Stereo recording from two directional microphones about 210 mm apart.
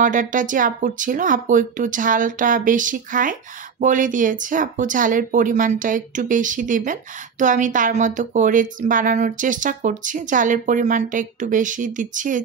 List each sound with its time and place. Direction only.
0.0 s speech: 40° right (ahead or behind)